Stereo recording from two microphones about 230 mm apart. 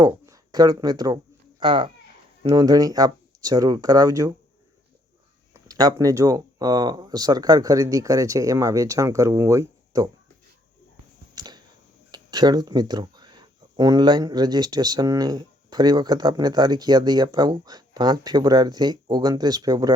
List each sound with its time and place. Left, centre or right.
0.0 s speech: centre
5.5 s speech: centre
11.3 s a sound: centre
12.1 s speech: centre